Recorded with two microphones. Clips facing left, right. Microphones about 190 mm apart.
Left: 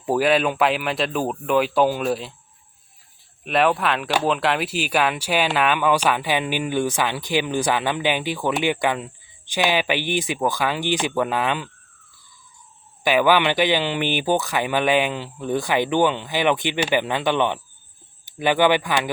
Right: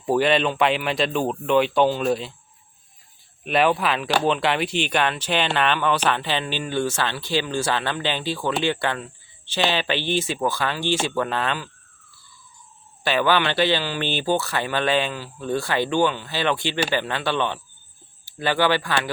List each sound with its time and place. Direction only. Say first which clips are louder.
0.0 s speech: left 1 dB; 5° left (ahead or behind)
3.4 s speech: even; centre (ahead or behind); by 11.7 s 15° left (ahead or behind)
13.1 s speech: left 3 dB; 15° left (ahead or behind)